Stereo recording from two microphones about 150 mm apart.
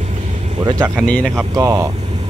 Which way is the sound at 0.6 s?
30° right (ahead or behind).